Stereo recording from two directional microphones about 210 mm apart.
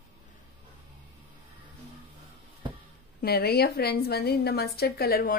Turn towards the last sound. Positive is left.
turn(degrees=45)  # may be behind; listen again after turning